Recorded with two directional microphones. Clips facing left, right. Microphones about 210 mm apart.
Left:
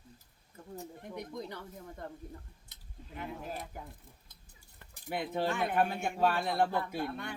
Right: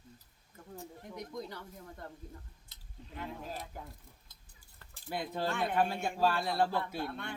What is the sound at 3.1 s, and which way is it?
Speech, 10° left (ahead or behind).